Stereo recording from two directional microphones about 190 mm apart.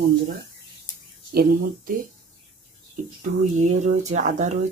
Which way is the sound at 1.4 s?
50° right (ahead or behind).